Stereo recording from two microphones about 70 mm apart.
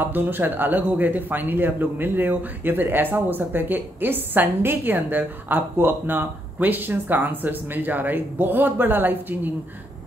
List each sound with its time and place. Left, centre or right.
0.0 s a man's voice: right